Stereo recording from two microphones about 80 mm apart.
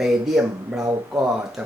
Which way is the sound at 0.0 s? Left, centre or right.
Centre.